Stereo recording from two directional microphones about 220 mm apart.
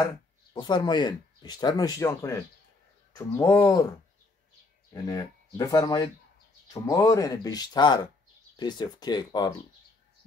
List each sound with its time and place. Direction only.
0.0 s speech: 20° left (ahead or behind)
4.9 s speech: 15° left (ahead or behind)